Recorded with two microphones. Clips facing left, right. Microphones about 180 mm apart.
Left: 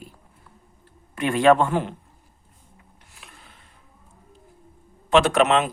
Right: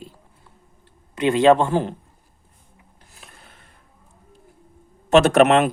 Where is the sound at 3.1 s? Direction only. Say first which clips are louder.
Right 1 dB; 40° right (ahead or behind).